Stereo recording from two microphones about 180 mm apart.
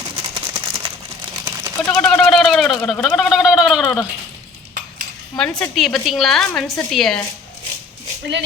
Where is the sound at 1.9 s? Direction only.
5° left (ahead or behind).